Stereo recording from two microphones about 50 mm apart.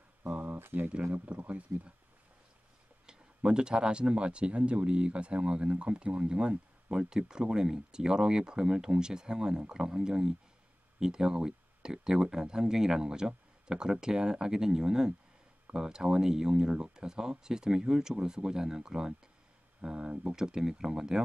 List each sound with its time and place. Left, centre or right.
0.3 s a sound: right
0.6 s speech: right
1.1 s speech: right
3.1 s speech: centre